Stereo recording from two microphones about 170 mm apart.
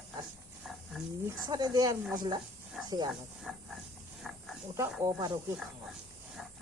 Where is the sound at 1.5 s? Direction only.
25° right (ahead or behind).